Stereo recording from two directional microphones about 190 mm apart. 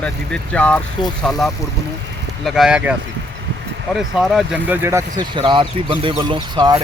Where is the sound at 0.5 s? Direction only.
5° left (ahead or behind).